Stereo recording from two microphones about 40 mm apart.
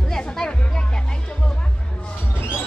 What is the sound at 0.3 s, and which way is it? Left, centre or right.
Music, left.